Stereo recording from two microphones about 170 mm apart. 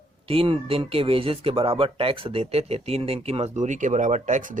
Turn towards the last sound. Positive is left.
turn(degrees=-50)  # may be behind; listen again after turning